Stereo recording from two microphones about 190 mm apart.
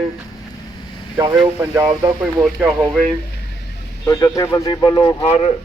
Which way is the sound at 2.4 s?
5° right (ahead or behind).